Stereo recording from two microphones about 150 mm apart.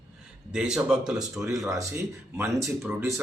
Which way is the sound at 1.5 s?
25° right (ahead or behind).